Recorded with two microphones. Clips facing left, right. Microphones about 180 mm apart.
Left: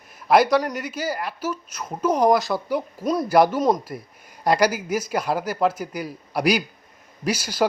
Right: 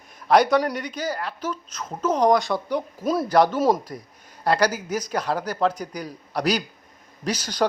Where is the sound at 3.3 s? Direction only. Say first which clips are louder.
Left 1 dB; 10° left (ahead or behind).